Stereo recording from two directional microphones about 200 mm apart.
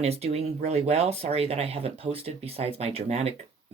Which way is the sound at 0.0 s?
30° right (ahead or behind).